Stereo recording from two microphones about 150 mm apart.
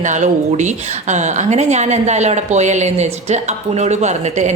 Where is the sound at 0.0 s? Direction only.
55° right (ahead or behind).